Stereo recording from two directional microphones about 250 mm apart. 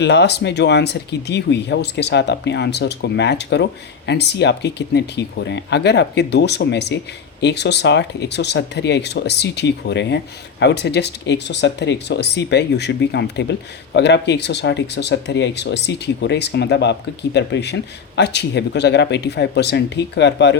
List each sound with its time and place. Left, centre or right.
0.0 s speech: left